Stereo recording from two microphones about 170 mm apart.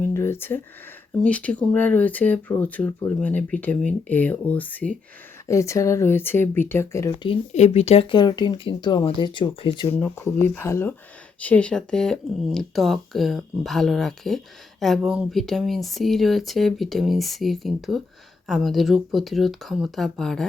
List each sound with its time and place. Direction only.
0.0 s a sound: 15° left (ahead or behind)
1.2 s speech: 5° left (ahead or behind)
7.5 s speech: 40° left (ahead or behind)
9.9 s speech: 10° left (ahead or behind)